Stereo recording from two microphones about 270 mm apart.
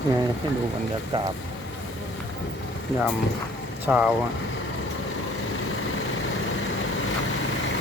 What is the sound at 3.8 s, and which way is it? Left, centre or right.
Speech, centre.